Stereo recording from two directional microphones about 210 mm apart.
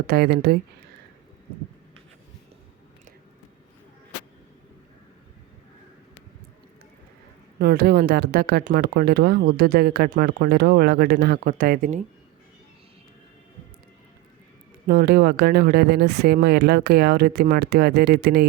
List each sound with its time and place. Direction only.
0.1 s speech: 50° right (ahead or behind)
7.6 s speech: 50° right (ahead or behind)
14.8 s speech: 50° right (ahead or behind)